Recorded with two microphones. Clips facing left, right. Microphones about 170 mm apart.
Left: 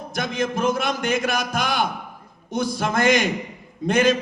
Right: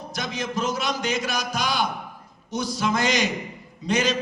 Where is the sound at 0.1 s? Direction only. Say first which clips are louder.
Left 5 dB; 55° left (ahead or behind).